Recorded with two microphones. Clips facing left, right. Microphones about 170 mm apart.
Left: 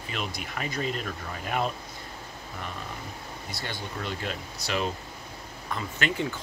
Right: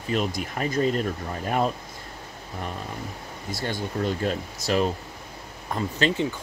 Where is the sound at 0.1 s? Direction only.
40° right (ahead or behind).